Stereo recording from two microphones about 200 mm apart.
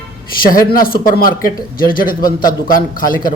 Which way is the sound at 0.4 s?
45° left (ahead or behind).